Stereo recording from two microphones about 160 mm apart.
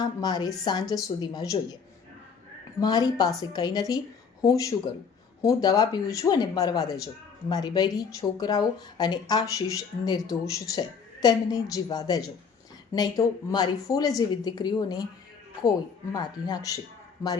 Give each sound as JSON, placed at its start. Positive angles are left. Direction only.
{"t": 0.0, "sound": "speech", "side_deg": 25}
{"t": 2.8, "sound": "speech", "side_deg": 25}
{"t": 16.1, "sound": "speech", "side_deg": 25}